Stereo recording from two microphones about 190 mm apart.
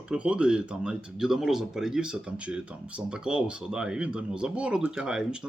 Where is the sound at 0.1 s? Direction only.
5° right (ahead or behind).